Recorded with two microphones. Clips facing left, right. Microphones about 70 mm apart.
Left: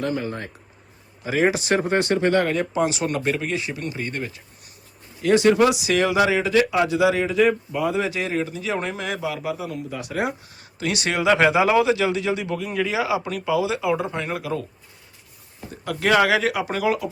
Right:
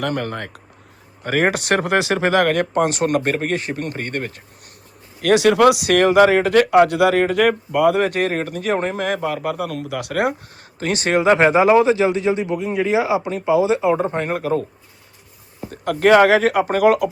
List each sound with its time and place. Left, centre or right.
0.0 s speech: right
1.2 s speech: right
5.2 s speech: right
6.1 s speech: right
8.8 s speech: right
10.8 s speech: right
15.7 s speech: right